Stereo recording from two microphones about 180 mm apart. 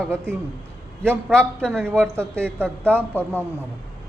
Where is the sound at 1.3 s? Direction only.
5° left (ahead or behind).